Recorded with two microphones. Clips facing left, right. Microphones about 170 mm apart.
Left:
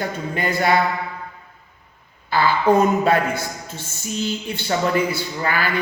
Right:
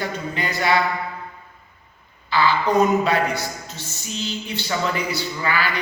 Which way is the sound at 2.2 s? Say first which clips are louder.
Left 3 dB; 50° left (ahead or behind).